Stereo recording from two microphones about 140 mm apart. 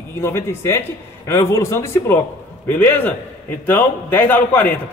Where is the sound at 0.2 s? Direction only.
15° left (ahead or behind).